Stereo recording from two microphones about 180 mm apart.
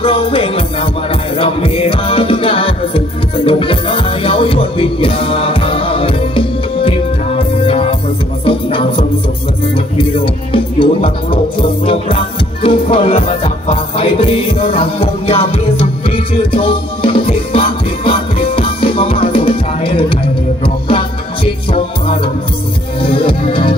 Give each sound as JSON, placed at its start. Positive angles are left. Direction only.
{"t": 0.0, "sound": "music", "side_deg": 30}
{"t": 16.5, "sound": "music", "side_deg": 30}
{"t": 23.0, "sound": "music", "side_deg": 30}